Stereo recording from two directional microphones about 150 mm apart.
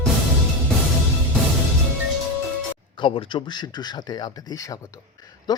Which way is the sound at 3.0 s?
35° left (ahead or behind).